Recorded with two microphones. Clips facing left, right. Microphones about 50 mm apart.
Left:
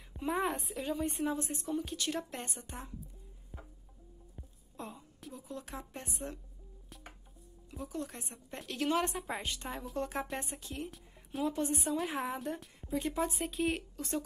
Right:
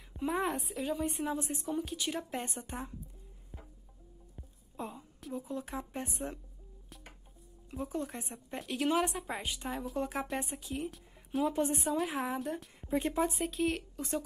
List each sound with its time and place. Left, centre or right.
0.1 s a woman's voice: centre
3.5 s music: centre
4.4 s a sound: centre
5.3 s speech: centre
7.7 s speech: right
8.2 s speech: centre
8.5 s a woman's voice: centre
12.8 s speech: right
13.2 s a woman's voice: centre